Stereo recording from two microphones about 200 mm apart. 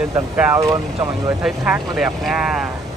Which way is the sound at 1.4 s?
5° right (ahead or behind).